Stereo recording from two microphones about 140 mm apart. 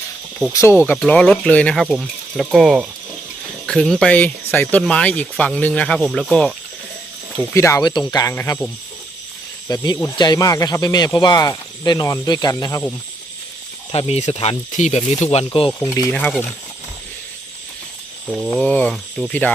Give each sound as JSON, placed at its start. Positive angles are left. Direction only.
{"t": 0.5, "sound": "speech", "side_deg": 20}
{"t": 0.9, "sound": "speech", "side_deg": 10}
{"t": 7.5, "sound": "speech", "side_deg": 20}
{"t": 9.6, "sound": "speech", "side_deg": 25}
{"t": 13.9, "sound": "speech", "side_deg": 45}
{"t": 15.4, "sound": "speech", "side_deg": 40}
{"t": 15.8, "sound": "speech", "side_deg": 25}
{"t": 16.1, "sound": "speech", "side_deg": 10}
{"t": 18.5, "sound": "speech", "side_deg": 10}